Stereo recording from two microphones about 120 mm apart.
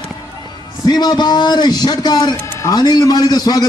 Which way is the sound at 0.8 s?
35° left (ahead or behind).